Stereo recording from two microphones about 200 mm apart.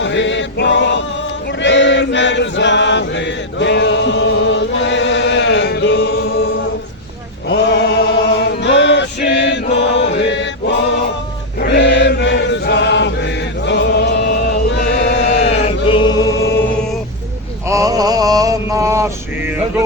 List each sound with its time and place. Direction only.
0.0 s male singing: 65° left (ahead or behind)
1.6 s chant: 65° left (ahead or behind)
7.4 s male singing: 60° left (ahead or behind)
11.6 s chant: 60° left (ahead or behind)
15.3 s chant: 30° left (ahead or behind)
17.7 s mantra: 15° right (ahead or behind)